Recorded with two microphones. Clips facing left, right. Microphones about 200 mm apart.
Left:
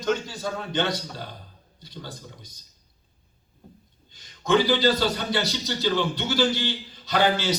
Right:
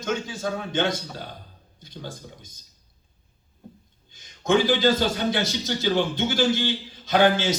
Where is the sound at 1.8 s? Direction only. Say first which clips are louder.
Right 2 dB; 50° right (ahead or behind).